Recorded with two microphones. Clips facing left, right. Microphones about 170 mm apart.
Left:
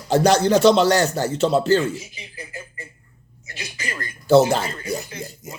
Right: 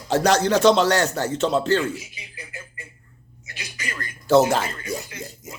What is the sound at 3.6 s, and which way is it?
Speech, 25° left (ahead or behind).